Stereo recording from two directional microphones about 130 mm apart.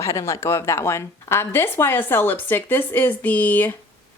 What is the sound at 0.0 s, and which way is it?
A woman's voice, 20° left (ahead or behind).